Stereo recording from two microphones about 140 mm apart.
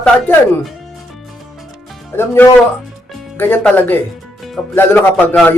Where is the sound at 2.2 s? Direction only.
15° left (ahead or behind).